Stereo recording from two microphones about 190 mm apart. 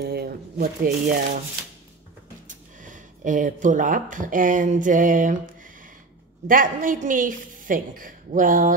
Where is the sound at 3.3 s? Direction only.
40° right (ahead or behind).